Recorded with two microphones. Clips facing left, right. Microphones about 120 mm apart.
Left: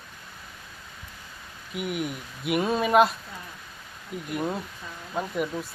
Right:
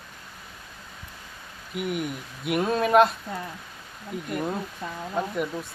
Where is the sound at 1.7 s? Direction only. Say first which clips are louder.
Right 1 dB; centre (ahead or behind).